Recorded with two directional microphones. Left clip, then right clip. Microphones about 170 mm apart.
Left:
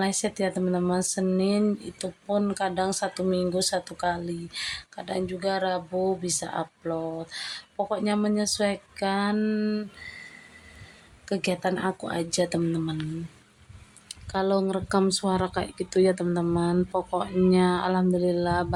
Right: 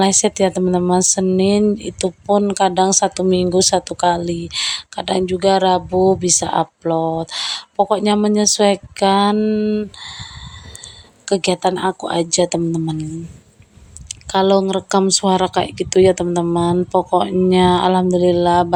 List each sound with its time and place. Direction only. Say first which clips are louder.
0.0 s speech: right 12 dB; 40° right (ahead or behind)
9.4 s mantra: right 10 dB; 25° right (ahead or behind)
10.0 s speech: right 9 dB; 50° right (ahead or behind)
11.3 s speech: right 11 dB; 40° right (ahead or behind)
14.1 s speech: right 11 dB; 40° right (ahead or behind)